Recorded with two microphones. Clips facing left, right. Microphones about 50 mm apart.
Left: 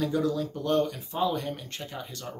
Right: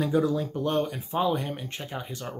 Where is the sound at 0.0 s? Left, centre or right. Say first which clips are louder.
Right 2 dB; centre.